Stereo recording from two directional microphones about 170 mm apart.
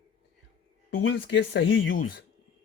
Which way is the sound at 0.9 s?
90° left.